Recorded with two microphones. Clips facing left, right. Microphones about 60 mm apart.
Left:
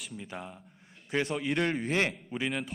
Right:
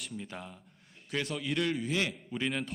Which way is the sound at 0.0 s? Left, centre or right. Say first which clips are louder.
Left 1 dB; centre.